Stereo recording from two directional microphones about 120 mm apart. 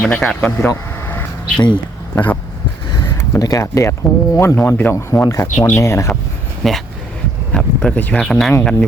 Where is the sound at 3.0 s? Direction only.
25° left (ahead or behind).